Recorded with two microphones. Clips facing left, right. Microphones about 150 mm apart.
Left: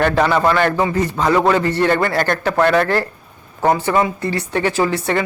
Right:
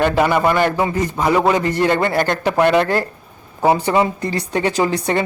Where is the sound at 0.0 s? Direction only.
15° right (ahead or behind).